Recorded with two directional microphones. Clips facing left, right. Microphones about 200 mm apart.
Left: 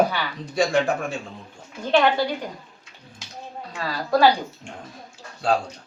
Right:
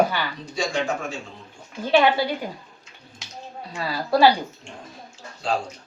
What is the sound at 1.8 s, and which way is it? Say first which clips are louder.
Speech: right 1 dB; 5° right (ahead or behind).